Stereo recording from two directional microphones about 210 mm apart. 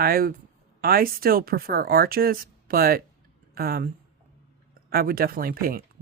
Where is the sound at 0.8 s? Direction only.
45° right (ahead or behind).